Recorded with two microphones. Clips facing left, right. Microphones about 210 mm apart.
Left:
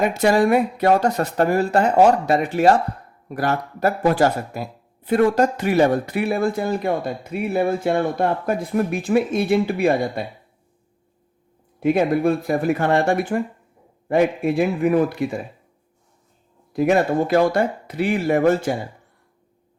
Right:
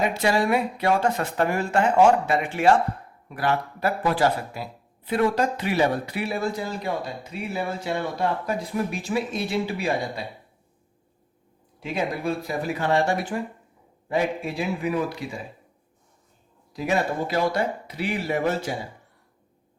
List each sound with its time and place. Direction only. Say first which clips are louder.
0.0 s speech: left 5 dB; 45° left (ahead or behind)
11.8 s speech: left 10 dB; 55° left (ahead or behind)
16.7 s speech: left 7 dB; 55° left (ahead or behind)